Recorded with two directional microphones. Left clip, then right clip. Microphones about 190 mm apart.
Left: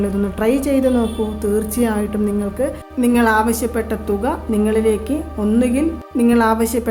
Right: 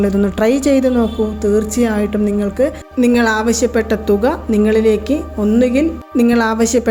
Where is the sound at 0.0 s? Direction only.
20° right (ahead or behind).